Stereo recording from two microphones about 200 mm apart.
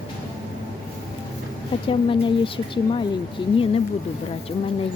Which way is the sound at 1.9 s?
25° left (ahead or behind).